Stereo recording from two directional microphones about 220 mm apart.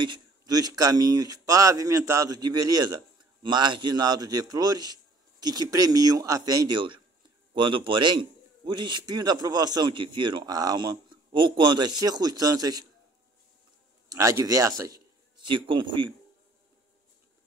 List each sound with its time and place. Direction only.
0.0 s a man's voice: 20° right (ahead or behind)
14.0 s a man's voice: 15° right (ahead or behind)